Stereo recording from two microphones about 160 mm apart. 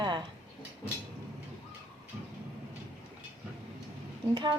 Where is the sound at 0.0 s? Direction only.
30° right (ahead or behind).